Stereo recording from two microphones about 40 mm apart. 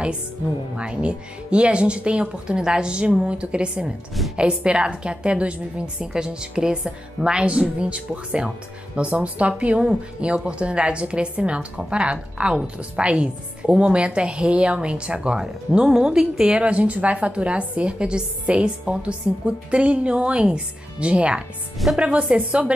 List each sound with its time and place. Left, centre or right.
0.7 s a woman's voice: right